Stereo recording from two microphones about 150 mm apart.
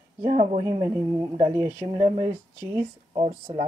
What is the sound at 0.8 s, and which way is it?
Speech, 25° right (ahead or behind).